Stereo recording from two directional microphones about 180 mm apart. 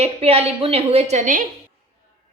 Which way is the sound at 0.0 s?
35° right (ahead or behind).